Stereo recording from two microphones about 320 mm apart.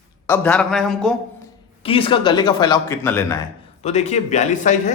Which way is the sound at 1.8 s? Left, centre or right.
Centre.